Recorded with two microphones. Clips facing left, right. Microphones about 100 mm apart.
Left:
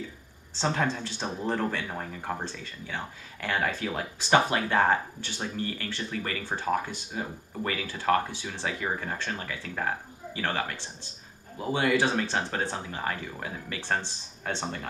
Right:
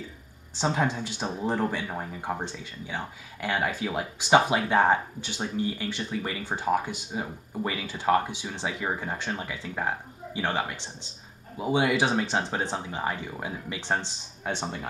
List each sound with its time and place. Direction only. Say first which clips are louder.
0.6 s speech: right 1 dB; 15° right (ahead or behind)